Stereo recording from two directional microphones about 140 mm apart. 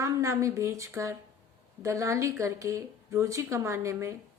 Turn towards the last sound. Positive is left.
turn(degrees=-20)  # may be behind; listen again after turning